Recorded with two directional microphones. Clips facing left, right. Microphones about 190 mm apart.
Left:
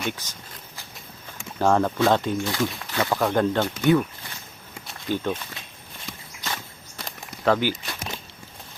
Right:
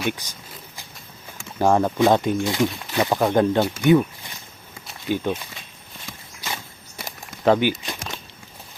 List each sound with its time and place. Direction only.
0.1 s speech: 15° right (ahead or behind)
1.5 s speech: 15° right (ahead or behind)
5.0 s speech: 10° right (ahead or behind)
7.0 s a sound: 10° right (ahead or behind)
7.4 s speech: 20° right (ahead or behind)